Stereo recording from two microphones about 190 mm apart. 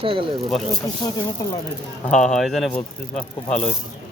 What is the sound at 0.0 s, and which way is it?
Speech, 25° right (ahead or behind).